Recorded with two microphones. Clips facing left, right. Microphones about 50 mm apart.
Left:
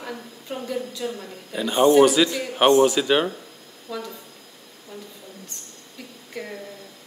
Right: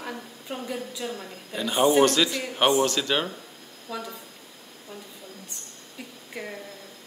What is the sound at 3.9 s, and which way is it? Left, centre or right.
Speech, right.